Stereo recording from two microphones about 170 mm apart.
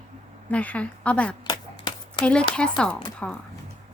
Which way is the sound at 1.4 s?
25° left (ahead or behind).